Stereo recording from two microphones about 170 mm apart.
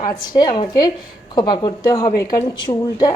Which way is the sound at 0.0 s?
25° left (ahead or behind).